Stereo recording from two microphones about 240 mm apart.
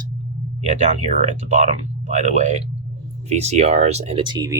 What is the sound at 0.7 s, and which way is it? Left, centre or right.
Speech, right.